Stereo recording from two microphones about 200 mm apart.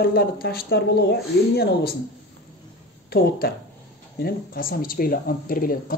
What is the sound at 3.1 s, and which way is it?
A man's voice, 50° left (ahead or behind).